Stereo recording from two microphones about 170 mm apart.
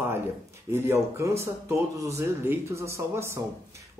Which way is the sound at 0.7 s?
15° right (ahead or behind).